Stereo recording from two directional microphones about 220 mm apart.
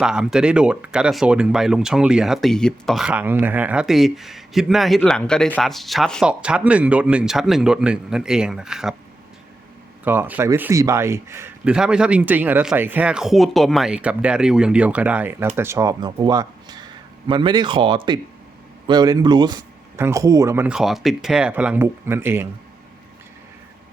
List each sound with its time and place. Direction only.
0.0 s speech: 5° right (ahead or behind)
10.0 s a man's voice: 10° right (ahead or behind)